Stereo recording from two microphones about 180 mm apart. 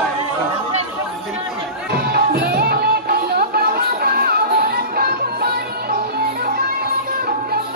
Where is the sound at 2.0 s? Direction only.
60° right (ahead or behind).